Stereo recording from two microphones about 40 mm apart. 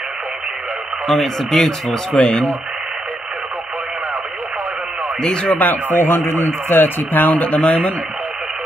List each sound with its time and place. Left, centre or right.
1.0 s speech: centre
2.1 s speech: centre
5.2 s speech: left
5.5 s speech: left
5.9 s a man's voice: left